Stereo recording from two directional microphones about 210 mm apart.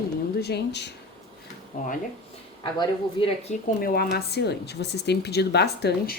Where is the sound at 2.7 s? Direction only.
20° left (ahead or behind).